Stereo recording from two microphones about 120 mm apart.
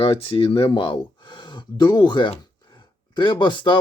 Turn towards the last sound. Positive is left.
turn(degrees=40)  # may be behind; listen again after turning